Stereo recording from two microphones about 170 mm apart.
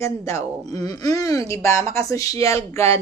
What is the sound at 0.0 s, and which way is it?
Speech, 20° left (ahead or behind).